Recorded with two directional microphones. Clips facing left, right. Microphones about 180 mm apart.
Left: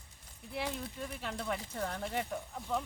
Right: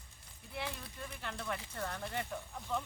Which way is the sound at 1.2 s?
15° left (ahead or behind).